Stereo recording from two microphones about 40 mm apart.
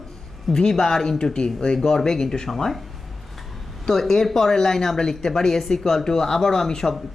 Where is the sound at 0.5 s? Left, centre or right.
Centre.